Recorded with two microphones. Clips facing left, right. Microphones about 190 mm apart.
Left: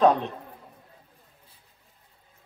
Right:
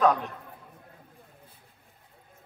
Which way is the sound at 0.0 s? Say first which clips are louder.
Left 3 dB; 25° left (ahead or behind).